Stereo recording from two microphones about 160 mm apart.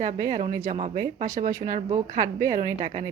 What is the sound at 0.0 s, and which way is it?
Speech, 55° right (ahead or behind).